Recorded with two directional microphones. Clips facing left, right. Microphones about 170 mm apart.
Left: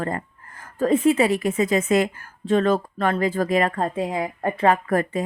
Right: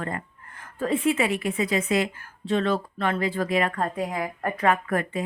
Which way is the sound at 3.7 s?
25° left (ahead or behind).